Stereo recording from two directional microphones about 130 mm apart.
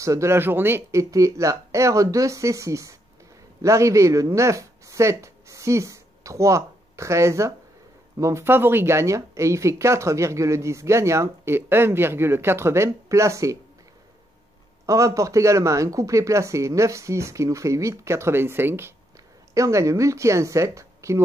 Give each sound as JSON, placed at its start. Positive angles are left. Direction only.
{"t": 0.0, "sound": "speech", "side_deg": -25}
{"t": 14.9, "sound": "speech", "side_deg": -25}